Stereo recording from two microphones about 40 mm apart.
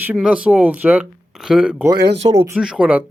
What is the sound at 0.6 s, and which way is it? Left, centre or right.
Speech, right.